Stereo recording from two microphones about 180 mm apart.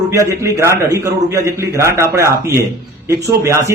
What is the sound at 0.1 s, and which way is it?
Speech, 15° right (ahead or behind).